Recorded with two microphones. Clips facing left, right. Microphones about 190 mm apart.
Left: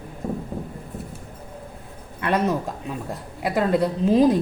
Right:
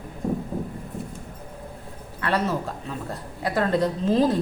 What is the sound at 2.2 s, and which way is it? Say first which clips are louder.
A woman's voice: left 3 dB; 20° left (ahead or behind).